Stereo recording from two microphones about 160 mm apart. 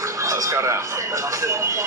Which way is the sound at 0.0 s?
20° right (ahead or behind).